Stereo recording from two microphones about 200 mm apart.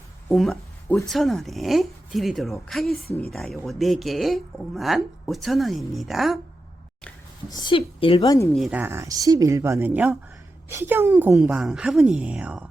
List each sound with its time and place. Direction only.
0.3 s speech: centre (ahead or behind)
7.5 s a woman's voice: 25° left (ahead or behind)
8.5 s speech: 5° right (ahead or behind)